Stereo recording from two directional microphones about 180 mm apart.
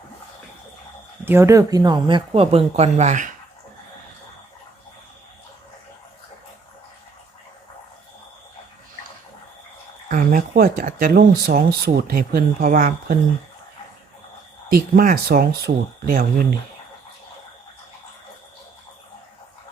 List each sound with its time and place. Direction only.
1.2 s speech: 15° right (ahead or behind); by 3.2 s 40° right (ahead or behind)
10.1 s speech: 50° right (ahead or behind)
14.7 s speech: 55° right (ahead or behind)